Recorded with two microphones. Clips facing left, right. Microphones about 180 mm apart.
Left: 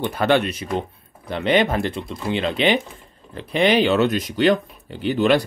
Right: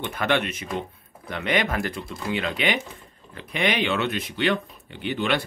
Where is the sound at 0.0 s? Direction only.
35° left (ahead or behind).